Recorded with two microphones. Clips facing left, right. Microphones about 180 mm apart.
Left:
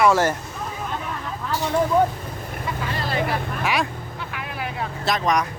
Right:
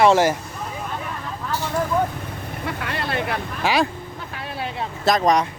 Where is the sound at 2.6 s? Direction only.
65° right (ahead or behind).